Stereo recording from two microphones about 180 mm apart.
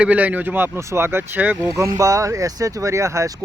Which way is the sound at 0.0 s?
10° right (ahead or behind).